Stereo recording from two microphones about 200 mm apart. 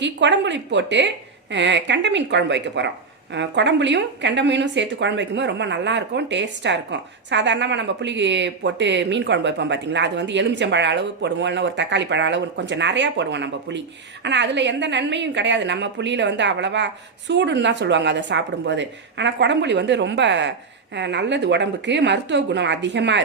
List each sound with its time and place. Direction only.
0.0 s a woman's voice: 65° right (ahead or behind)